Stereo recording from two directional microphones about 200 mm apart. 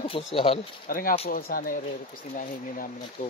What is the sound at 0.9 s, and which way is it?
Speech, 45° left (ahead or behind).